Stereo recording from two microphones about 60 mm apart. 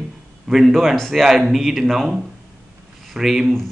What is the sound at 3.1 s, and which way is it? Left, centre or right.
Speech, centre.